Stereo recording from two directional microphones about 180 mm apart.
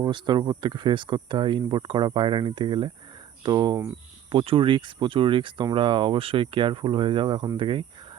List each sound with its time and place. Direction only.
0.0 s speech: 25° right (ahead or behind)
4.3 s speech: 30° right (ahead or behind)